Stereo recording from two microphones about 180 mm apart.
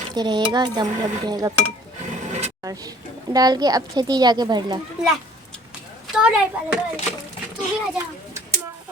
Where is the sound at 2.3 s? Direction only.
40° right (ahead or behind).